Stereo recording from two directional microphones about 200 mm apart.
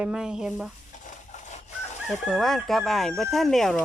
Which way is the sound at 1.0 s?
35° left (ahead or behind).